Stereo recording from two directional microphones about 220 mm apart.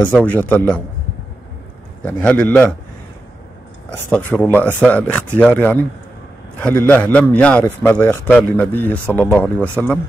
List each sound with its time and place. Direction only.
0.0 s a man's voice: 5° left (ahead or behind)
2.0 s a man's voice: 5° left (ahead or behind)
4.1 s a man's voice: 5° left (ahead or behind)